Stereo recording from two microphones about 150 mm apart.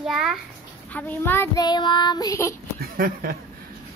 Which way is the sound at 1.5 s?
30° left (ahead or behind).